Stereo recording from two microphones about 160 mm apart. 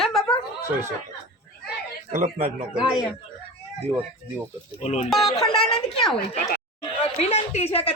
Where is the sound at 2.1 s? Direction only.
55° right (ahead or behind).